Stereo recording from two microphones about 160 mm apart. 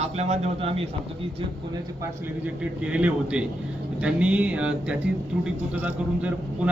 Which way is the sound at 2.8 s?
5° right (ahead or behind).